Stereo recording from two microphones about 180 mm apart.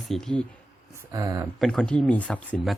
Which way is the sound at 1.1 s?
20° right (ahead or behind).